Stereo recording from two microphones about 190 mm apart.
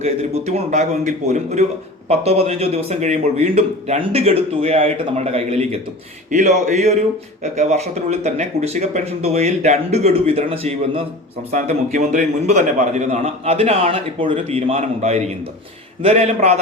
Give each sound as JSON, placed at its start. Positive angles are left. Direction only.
{"t": 0.0, "sound": "a man's voice", "side_deg": -35}